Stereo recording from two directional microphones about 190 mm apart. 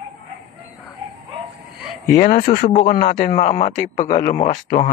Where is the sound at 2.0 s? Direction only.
45° left (ahead or behind).